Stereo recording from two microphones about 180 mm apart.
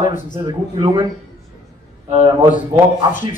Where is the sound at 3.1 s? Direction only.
45° left (ahead or behind).